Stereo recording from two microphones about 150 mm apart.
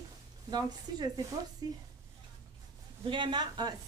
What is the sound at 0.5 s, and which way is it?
A woman's voice, 30° right (ahead or behind).